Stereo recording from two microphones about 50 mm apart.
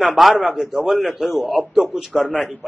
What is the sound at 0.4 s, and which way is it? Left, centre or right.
A man's voice, centre.